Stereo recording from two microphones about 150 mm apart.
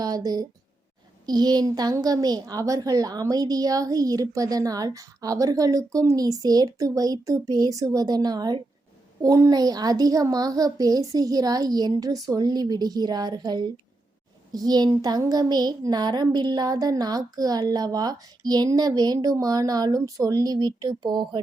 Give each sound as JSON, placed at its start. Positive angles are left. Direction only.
{"t": 0.0, "sound": "a woman's voice", "side_deg": -25}